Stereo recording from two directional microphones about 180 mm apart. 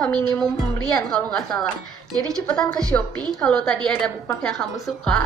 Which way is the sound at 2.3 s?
5° left (ahead or behind).